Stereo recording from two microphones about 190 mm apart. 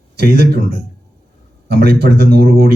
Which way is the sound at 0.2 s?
55° right (ahead or behind).